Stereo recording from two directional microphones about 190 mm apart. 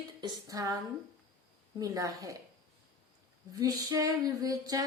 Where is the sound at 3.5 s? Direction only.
20° right (ahead or behind).